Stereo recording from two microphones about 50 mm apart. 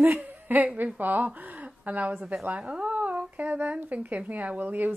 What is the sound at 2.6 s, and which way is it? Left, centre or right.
Speech, right.